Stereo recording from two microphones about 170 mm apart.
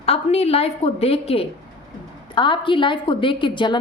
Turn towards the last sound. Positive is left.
turn(degrees=25)  # may be behind; listen again after turning